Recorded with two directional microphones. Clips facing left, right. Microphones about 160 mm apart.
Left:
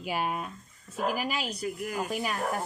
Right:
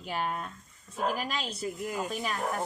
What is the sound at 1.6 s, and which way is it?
Speech, 25° right (ahead or behind).